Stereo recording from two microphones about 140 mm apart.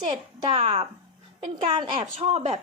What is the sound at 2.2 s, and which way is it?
Speech, 50° right (ahead or behind).